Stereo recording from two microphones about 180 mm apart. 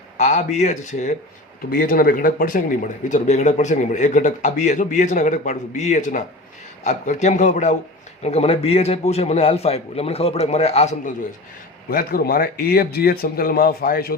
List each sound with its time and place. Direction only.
0.2 s a man's voice: 40° left (ahead or behind)
1.7 s a man's voice: 55° left (ahead or behind)
11.9 s a man's voice: 55° left (ahead or behind)